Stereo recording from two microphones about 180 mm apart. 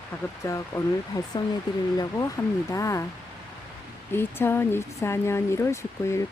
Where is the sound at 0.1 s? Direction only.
10° left (ahead or behind).